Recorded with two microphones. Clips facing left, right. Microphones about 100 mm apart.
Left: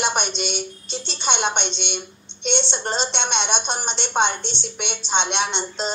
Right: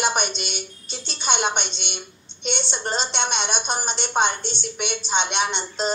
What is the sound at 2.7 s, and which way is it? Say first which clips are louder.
Speech: left 1 dB; 5° right (ahead or behind).